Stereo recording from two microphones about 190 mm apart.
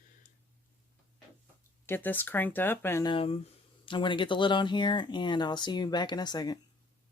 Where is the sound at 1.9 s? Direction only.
10° left (ahead or behind).